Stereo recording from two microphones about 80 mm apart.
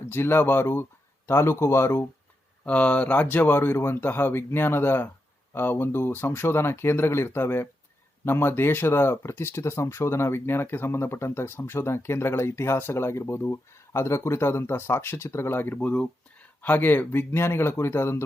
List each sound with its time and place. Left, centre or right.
0.0 s speech: left
2.6 s speech: centre